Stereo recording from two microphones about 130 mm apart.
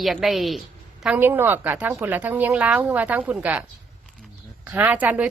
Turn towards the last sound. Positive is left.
turn(degrees=-10)  # may be behind; listen again after turning